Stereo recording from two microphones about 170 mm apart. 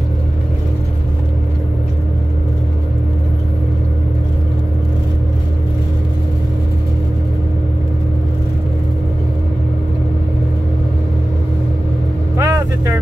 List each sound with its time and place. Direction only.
12.4 s vehicle: 20° right (ahead or behind)